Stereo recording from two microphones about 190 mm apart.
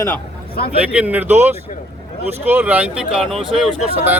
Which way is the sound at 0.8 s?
5° right (ahead or behind).